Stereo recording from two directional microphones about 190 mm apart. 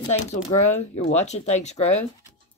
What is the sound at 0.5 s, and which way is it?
Speech, 35° left (ahead or behind).